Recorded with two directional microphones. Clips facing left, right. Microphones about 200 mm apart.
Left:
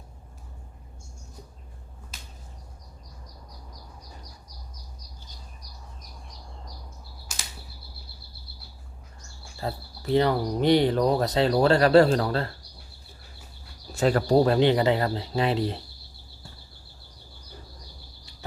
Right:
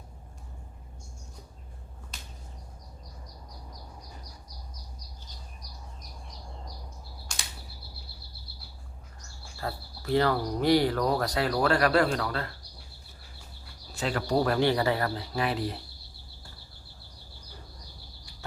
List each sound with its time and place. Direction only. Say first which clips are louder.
7.3 s a sound: left 1 dB; 5° left (ahead or behind)
9.6 s speech: left 3 dB; 20° left (ahead or behind)
13.9 s speech: left 8 dB; 45° left (ahead or behind)
14.3 s speech: left 4 dB; 25° left (ahead or behind)